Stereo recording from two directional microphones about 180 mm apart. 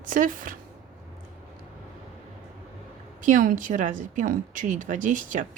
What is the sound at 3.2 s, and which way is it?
A woman's voice, 45° right (ahead or behind).